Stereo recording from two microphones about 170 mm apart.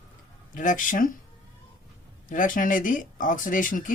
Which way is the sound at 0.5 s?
50° left (ahead or behind).